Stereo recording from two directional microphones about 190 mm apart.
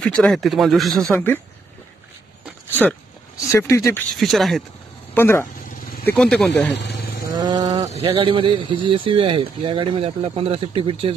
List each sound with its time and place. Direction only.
0.0 s speech: 5° left (ahead or behind)
3.5 s speech: 15° left (ahead or behind)
4.2 s speech: centre (ahead or behind)
5.1 s speech: 15° left (ahead or behind)
6.8 s sheep: 55° left (ahead or behind)
7.3 s sheep: 20° right (ahead or behind)
8.0 s speech: 30° right (ahead or behind)